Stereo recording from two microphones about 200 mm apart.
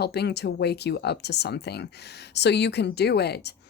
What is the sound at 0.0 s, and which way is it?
Speech, 55° left (ahead or behind).